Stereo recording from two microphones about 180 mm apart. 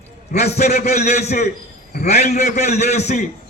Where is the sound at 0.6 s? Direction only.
40° left (ahead or behind).